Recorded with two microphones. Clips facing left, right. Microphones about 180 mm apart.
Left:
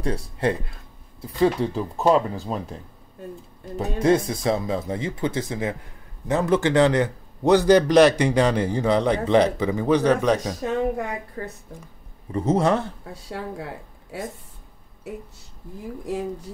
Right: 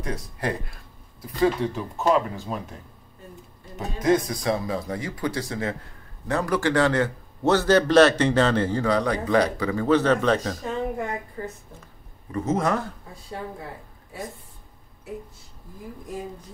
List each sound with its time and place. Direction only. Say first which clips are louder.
0.0 s speech: left 5 dB; 25° left (ahead or behind)
1.2 s speech: left 2 dB; 35° left (ahead or behind)
3.7 s a man's voice: left 2 dB; 30° left (ahead or behind); by 10.6 s 15° left (ahead or behind)
12.3 s speech: left 4 dB; 30° left (ahead or behind)
13.1 s a woman's voice: left 4 dB; 80° left